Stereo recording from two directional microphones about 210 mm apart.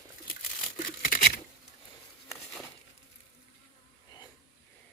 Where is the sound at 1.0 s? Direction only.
40° left (ahead or behind).